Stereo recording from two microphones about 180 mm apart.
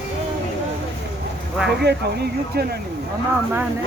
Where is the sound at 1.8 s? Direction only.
65° right (ahead or behind).